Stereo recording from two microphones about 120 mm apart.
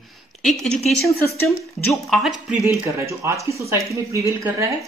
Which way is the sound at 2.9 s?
25° right (ahead or behind).